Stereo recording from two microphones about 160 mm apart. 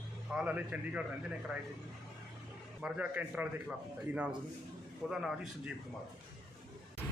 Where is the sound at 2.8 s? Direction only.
10° right (ahead or behind).